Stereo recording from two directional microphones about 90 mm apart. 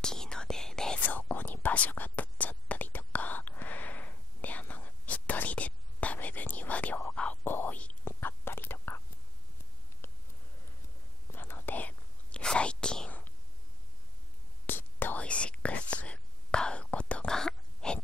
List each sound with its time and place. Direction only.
0.0 s whispering: 5° left (ahead or behind)
1.0 s whispering: 20° left (ahead or behind)
8.0 s whispering: 25° left (ahead or behind)
10.0 s a sound: 30° left (ahead or behind)
11.3 s whispering: 25° left (ahead or behind)
14.7 s whispering: 20° left (ahead or behind)